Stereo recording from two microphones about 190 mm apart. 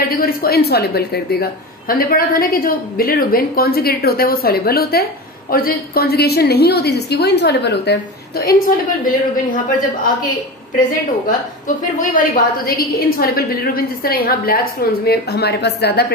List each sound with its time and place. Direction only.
0.1 s a woman's voice: 50° left (ahead or behind)
11.2 s a woman's voice: 45° left (ahead or behind); by 16.1 s 60° left (ahead or behind)